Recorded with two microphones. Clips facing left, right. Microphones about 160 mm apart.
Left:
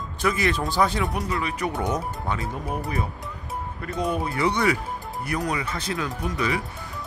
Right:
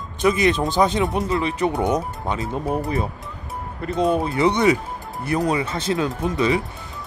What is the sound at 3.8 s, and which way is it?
Speech, 25° right (ahead or behind).